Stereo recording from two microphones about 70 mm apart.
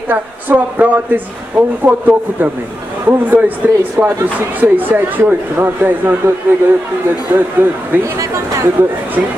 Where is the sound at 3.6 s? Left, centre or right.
Right.